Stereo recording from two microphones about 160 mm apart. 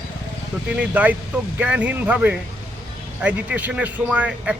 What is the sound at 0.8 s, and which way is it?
Speech, 10° right (ahead or behind).